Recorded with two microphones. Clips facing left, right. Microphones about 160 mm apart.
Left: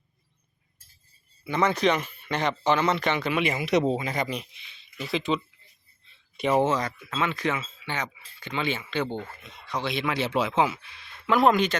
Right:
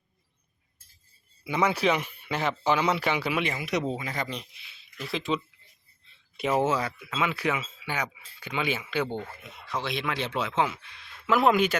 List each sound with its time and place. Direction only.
1.5 s speech: 10° right (ahead or behind)
3.4 s speech: 20° left (ahead or behind)
4.5 s speech: 5° right (ahead or behind)